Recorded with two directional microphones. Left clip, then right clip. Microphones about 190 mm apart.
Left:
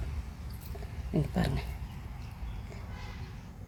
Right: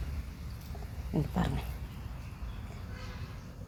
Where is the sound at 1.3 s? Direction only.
25° left (ahead or behind).